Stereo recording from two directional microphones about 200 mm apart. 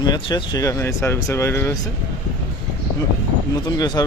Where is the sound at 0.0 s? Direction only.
20° left (ahead or behind).